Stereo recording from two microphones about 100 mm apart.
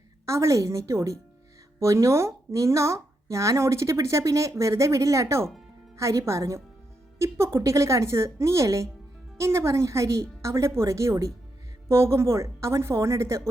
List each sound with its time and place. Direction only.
0.3 s a woman's voice: 30° right (ahead or behind)